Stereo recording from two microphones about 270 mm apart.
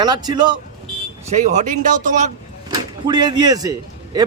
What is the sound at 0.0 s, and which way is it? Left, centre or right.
Speech, centre.